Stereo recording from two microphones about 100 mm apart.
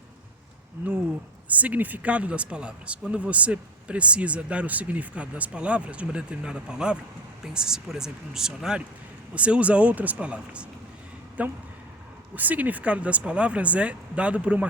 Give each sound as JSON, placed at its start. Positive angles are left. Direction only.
{"t": 1.5, "sound": "speech", "side_deg": -15}